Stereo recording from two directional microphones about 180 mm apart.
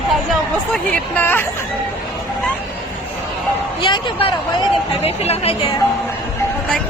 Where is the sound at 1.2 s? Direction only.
10° left (ahead or behind).